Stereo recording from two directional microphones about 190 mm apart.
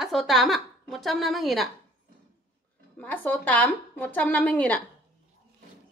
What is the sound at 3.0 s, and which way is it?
Speech, 10° left (ahead or behind).